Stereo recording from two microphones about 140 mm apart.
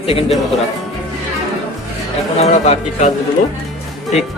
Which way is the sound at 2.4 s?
55° left (ahead or behind).